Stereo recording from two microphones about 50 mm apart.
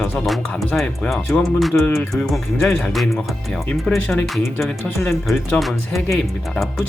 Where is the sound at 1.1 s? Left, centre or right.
Centre.